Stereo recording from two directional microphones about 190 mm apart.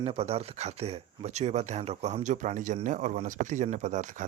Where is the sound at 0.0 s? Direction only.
30° right (ahead or behind).